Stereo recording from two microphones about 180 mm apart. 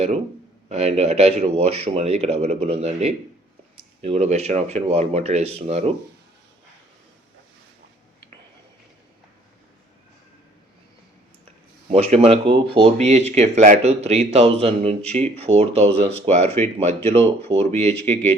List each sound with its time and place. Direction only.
0.7 s speech: 35° right (ahead or behind)
11.9 s speech: 35° right (ahead or behind)